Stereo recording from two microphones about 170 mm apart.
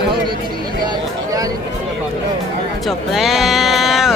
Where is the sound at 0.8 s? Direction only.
20° right (ahead or behind).